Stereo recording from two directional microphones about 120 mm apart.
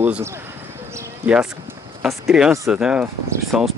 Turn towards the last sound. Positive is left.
turn(degrees=-5)  # may be behind; listen again after turning